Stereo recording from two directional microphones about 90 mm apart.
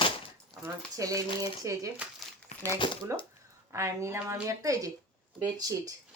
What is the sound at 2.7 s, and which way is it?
Speech, 65° left (ahead or behind).